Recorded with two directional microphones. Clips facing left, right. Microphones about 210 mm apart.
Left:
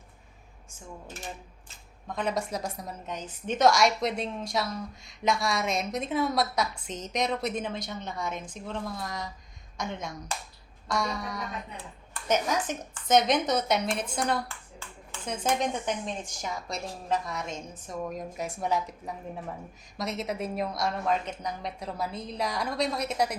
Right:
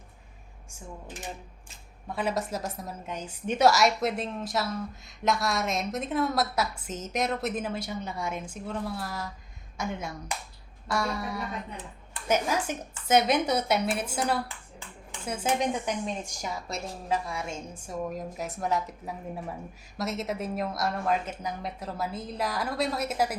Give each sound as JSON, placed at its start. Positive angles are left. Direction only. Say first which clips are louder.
{"t": 2.0, "sound": "a woman's voice", "louder": "even", "side_deg": -5}